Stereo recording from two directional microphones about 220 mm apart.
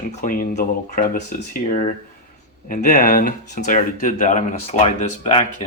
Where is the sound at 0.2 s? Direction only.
35° left (ahead or behind).